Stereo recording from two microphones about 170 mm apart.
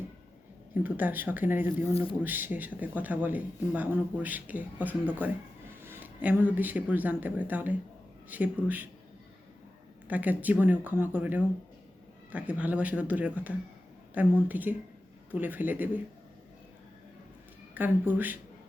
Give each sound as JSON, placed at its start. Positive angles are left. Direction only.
{"t": 0.7, "sound": "speech", "side_deg": -10}
{"t": 1.9, "sound": "speech", "side_deg": 35}
{"t": 2.2, "sound": "speech", "side_deg": -10}
{"t": 10.1, "sound": "speech", "side_deg": -10}
{"t": 17.7, "sound": "speech", "side_deg": -10}